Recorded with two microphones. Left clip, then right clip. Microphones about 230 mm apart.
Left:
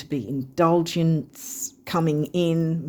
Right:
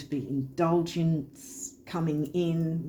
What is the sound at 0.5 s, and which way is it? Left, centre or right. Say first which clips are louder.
Speech: left 7 dB; left.